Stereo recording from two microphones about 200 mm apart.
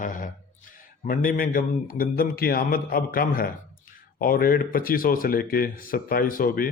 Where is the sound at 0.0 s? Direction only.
40° left (ahead or behind).